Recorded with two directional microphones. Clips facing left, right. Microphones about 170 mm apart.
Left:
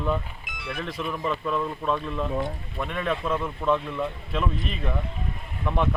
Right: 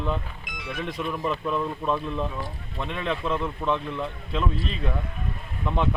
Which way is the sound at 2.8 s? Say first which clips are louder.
Left 1 dB; 20° right (ahead or behind).